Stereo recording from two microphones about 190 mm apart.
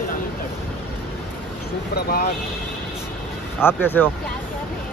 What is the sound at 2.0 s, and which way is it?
Speech, 50° left (ahead or behind).